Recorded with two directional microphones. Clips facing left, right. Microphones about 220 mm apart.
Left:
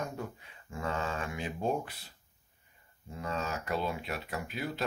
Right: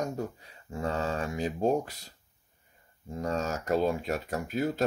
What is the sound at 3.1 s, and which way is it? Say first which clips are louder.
Speech: right 5 dB; 40° right (ahead or behind).